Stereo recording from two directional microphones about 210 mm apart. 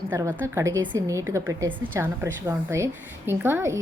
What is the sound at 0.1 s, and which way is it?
A woman's voice, 10° right (ahead or behind).